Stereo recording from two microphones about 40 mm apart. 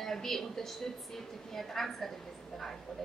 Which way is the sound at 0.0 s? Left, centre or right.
Centre.